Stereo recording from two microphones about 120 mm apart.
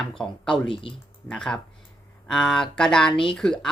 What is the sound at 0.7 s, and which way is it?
Speech, 50° left (ahead or behind).